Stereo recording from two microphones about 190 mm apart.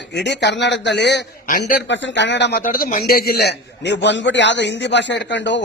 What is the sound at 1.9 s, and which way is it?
Speech, 70° left (ahead or behind).